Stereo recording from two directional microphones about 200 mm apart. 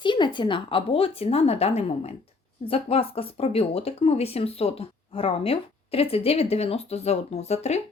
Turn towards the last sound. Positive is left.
turn(degrees=35)  # may be behind; listen again after turning